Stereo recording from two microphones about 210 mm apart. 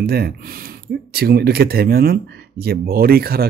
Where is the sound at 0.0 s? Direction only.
45° right (ahead or behind).